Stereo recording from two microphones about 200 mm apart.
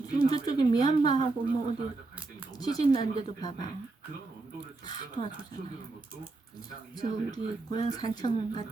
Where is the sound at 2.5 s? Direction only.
20° left (ahead or behind).